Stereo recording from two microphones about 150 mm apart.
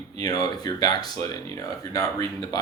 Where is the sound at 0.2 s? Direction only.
25° left (ahead or behind).